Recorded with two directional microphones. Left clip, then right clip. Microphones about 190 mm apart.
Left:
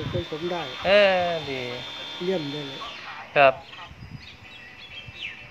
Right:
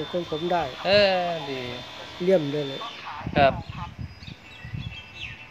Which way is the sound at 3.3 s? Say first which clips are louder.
Left 3 dB; 5° left (ahead or behind).